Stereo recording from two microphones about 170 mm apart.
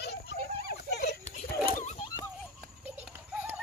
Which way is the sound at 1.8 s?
40° left (ahead or behind).